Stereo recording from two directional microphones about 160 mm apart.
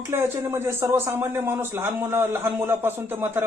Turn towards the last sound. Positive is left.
turn(degrees=-15)  # may be behind; listen again after turning